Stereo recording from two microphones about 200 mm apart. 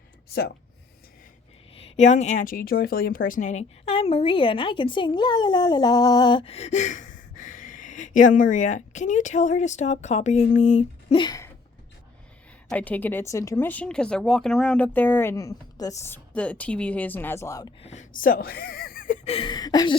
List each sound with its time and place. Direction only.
2.0 s speech: 35° left (ahead or behind)
11.2 s a sound: 20° left (ahead or behind)
12.6 s speech: 5° left (ahead or behind)
17.8 s speech: 40° left (ahead or behind); by 20.0 s 20° left (ahead or behind)